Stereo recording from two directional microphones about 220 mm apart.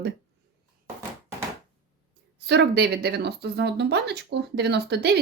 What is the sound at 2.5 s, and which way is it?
Speech, 50° right (ahead or behind).